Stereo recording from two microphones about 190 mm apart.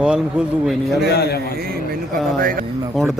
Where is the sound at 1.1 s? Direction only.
55° left (ahead or behind).